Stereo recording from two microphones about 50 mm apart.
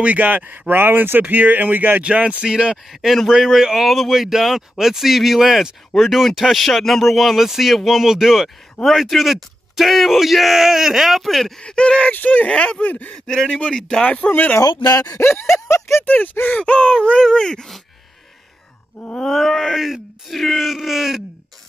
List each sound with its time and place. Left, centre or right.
0.0 s speech: right
2.0 s speech: right
2.9 s a man's voice: centre
11.6 s speech: centre
12.1 s speech: left
12.4 s speech: left
13.3 s speech: centre
14.1 s speech: left
15.0 s a sound: left
16.5 s speech: left
19.2 s a man's voice: centre